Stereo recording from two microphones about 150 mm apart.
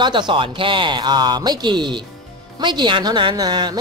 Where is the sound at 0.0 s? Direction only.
30° right (ahead or behind).